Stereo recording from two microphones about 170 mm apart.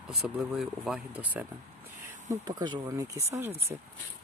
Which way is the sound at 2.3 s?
25° right (ahead or behind).